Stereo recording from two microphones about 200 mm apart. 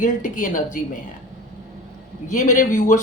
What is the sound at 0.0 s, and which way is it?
Speech, 40° left (ahead or behind).